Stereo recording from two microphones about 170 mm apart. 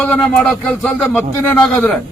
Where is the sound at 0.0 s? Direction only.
5° left (ahead or behind).